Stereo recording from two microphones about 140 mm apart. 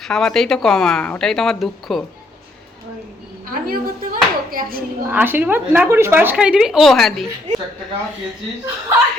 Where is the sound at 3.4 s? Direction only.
90° right.